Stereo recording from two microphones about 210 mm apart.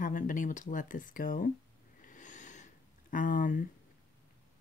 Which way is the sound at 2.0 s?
40° left (ahead or behind).